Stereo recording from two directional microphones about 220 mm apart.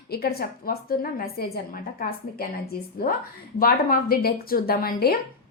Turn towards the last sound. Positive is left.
turn(degrees=45)  # may be behind; listen again after turning